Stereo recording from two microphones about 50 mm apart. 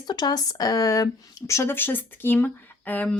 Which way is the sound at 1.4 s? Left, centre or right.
Left.